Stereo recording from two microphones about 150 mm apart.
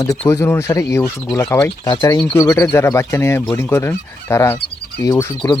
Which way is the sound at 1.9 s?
25° left (ahead or behind).